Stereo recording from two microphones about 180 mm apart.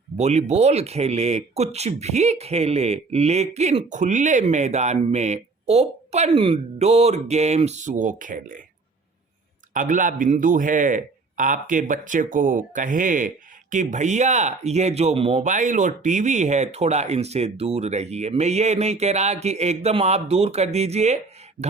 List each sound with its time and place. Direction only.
0.2 s a man's voice: 40° right (ahead or behind)
9.7 s a man's voice: 45° right (ahead or behind)